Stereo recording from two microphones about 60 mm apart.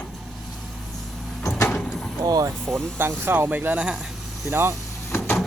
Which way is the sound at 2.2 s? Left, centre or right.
Right.